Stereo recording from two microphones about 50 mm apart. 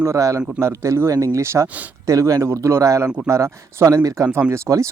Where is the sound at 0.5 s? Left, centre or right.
Right.